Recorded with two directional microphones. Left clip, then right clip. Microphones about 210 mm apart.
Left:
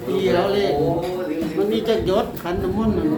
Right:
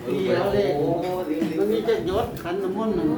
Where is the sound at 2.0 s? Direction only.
50° left (ahead or behind).